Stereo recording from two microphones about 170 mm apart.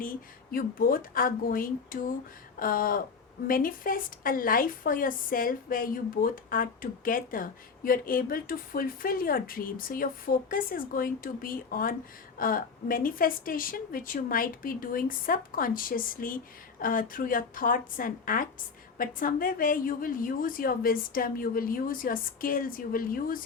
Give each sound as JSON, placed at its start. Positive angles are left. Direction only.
{"t": 0.5, "sound": "speech", "side_deg": 55}